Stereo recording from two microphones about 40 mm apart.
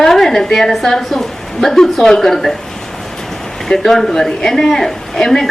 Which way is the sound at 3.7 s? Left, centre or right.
Centre.